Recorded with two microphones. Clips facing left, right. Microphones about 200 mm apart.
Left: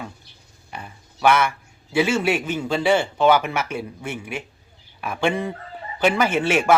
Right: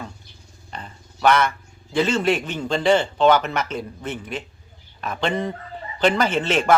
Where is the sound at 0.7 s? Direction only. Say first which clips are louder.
Even; 10° left (ahead or behind).